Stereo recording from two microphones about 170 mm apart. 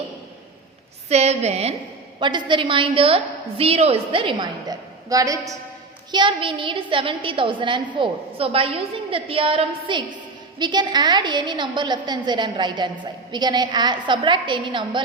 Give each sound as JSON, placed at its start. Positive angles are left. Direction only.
{"t": 1.1, "sound": "a woman's voice", "side_deg": -40}
{"t": 2.1, "sound": "a woman's voice", "side_deg": -30}